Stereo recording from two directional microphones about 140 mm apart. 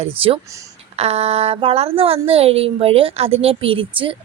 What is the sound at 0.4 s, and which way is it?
Speech, 20° right (ahead or behind).